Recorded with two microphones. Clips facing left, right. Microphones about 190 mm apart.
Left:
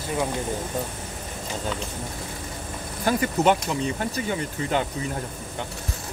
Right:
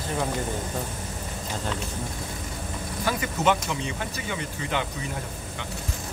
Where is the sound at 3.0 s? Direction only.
45° left (ahead or behind).